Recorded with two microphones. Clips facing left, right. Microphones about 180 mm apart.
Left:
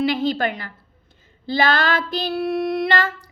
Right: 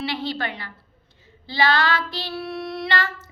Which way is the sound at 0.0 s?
45° left (ahead or behind).